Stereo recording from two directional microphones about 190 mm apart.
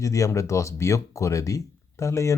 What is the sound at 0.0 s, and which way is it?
Speech, 15° left (ahead or behind).